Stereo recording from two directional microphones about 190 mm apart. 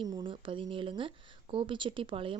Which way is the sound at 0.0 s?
25° right (ahead or behind).